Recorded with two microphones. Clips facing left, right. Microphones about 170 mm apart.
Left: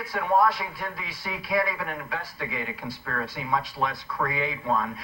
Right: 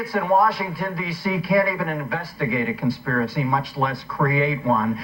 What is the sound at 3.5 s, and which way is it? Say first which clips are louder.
Speech: right 4 dB; 40° right (ahead or behind).